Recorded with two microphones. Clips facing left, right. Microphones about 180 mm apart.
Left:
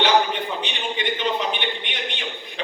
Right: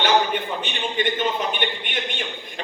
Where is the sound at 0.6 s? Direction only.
50° right (ahead or behind).